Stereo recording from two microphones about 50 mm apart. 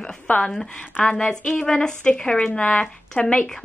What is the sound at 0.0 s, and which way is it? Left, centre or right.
A woman's voice, centre.